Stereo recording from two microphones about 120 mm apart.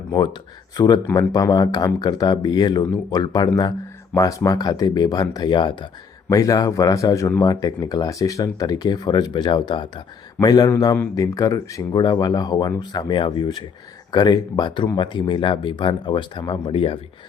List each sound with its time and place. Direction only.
0.8 s speech: 35° left (ahead or behind)
6.2 s speech: 30° left (ahead or behind); by 17.0 s 50° left (ahead or behind)